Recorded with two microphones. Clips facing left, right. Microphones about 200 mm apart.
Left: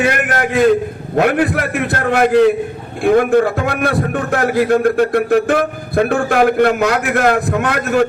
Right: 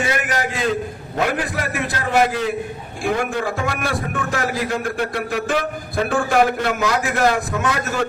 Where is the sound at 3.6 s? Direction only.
60° left (ahead or behind).